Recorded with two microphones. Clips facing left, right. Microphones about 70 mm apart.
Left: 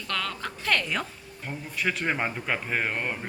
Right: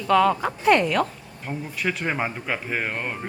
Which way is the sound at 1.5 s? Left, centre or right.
Centre.